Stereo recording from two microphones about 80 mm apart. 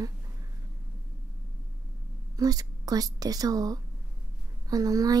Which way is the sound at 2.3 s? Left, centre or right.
Right.